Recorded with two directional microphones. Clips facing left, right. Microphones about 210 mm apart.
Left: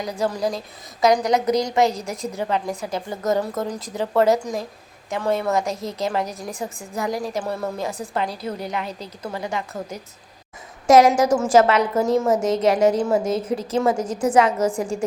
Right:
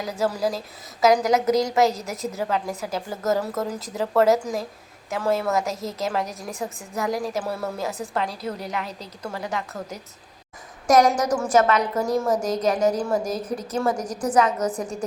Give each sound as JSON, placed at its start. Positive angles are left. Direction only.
{"t": 0.0, "sound": "a woman's voice", "side_deg": -5}
{"t": 11.1, "sound": "a woman's voice", "side_deg": 25}